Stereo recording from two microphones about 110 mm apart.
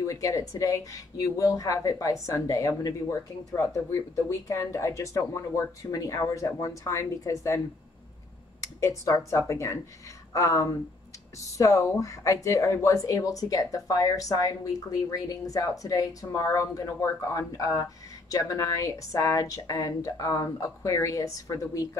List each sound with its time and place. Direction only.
0.0 s speech: 30° left (ahead or behind)
8.8 s speech: 30° left (ahead or behind)